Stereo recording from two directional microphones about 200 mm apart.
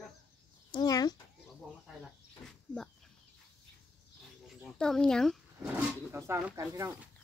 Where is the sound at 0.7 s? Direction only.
20° left (ahead or behind).